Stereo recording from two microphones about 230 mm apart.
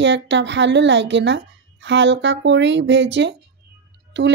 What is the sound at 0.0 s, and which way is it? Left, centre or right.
A woman's voice, right.